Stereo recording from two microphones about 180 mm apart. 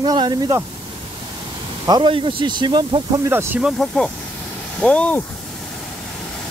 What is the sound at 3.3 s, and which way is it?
Speech, 10° right (ahead or behind).